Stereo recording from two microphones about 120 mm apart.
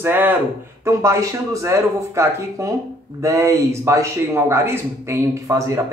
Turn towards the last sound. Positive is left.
turn(degrees=-25)  # may be behind; listen again after turning